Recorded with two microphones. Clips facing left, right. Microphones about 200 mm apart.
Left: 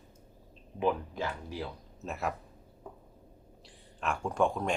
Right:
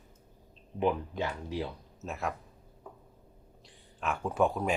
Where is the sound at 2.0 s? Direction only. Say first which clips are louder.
Left 1 dB; centre (ahead or behind).